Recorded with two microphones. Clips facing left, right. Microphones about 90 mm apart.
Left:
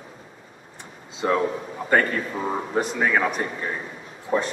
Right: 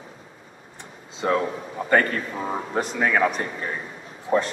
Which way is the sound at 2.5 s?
Centre (ahead or behind).